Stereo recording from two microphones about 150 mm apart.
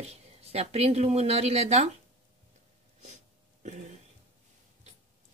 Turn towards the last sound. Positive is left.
turn(degrees=-50)  # may be behind; listen again after turning